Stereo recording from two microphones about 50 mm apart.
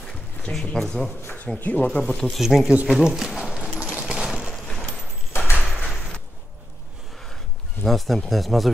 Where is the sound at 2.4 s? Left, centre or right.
Centre.